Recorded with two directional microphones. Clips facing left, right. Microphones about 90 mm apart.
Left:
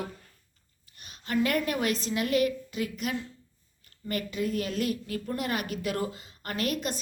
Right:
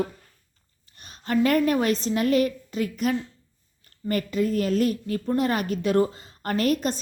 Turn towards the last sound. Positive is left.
turn(degrees=-40)  # may be behind; listen again after turning